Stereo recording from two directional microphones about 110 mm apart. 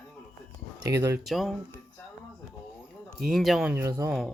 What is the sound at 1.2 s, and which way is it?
Speech, centre (ahead or behind).